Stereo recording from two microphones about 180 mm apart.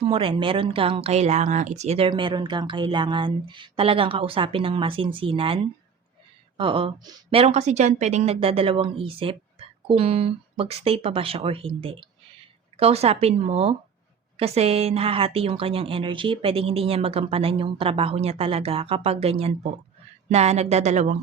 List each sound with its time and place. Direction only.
0.0 s speech: 30° right (ahead or behind)
6.6 s a woman's voice: 30° right (ahead or behind)